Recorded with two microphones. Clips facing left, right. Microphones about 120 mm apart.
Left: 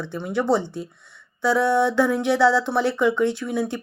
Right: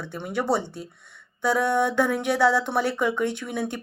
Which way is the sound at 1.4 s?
45° right (ahead or behind).